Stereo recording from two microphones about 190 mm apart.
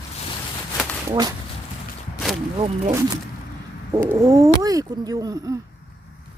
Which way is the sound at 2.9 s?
15° right (ahead or behind).